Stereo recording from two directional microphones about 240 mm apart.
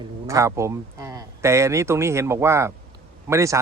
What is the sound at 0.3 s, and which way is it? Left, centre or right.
A man's voice, centre.